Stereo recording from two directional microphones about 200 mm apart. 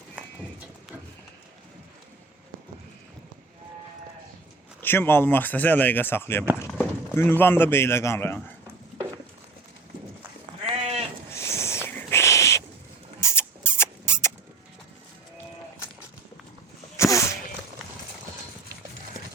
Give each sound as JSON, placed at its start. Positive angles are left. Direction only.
{"t": 0.2, "sound": "horse", "side_deg": -5}
{"t": 4.8, "sound": "a man's voice", "side_deg": 10}
{"t": 10.8, "sound": "sheep", "side_deg": -30}
{"t": 11.3, "sound": "owl", "side_deg": 15}
{"t": 13.1, "sound": "rodents", "side_deg": 15}
{"t": 17.0, "sound": "a sound", "side_deg": 15}